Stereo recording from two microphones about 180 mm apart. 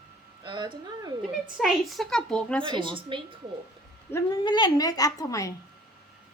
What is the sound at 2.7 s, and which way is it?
Speech, 25° right (ahead or behind).